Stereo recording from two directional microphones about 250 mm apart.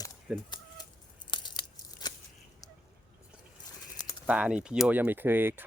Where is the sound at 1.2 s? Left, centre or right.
Centre.